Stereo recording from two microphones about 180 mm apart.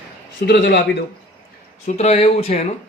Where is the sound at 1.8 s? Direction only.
40° left (ahead or behind).